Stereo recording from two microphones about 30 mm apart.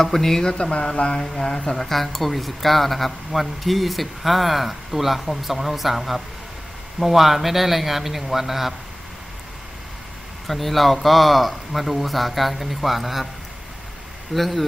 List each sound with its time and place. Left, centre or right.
0.0 s speech: centre
0.5 s a sound: left
1.4 s speech: left
1.7 s a man's voice: centre
10.4 s speech: centre
14.3 s speech: centre